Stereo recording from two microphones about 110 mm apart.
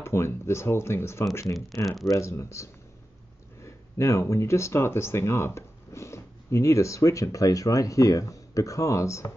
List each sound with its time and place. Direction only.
0.0 s speech: 25° left (ahead or behind)